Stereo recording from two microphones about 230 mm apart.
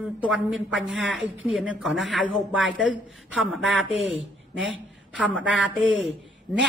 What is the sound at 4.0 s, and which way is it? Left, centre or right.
Speech, left.